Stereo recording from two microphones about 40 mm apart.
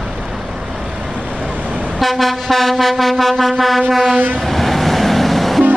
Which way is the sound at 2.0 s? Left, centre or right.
Centre.